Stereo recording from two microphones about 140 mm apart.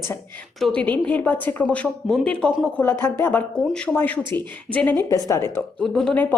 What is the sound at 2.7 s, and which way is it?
A woman's voice, 15° left (ahead or behind).